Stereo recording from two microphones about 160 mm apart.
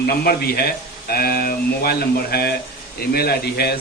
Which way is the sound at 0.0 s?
75° left (ahead or behind).